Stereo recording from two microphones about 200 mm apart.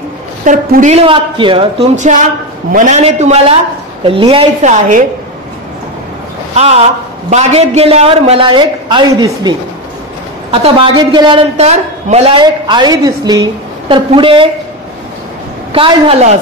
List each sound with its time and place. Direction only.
0.5 s speech: 40° right (ahead or behind)
6.5 s a woman's voice: 30° right (ahead or behind)
15.7 s a woman's voice: 30° right (ahead or behind)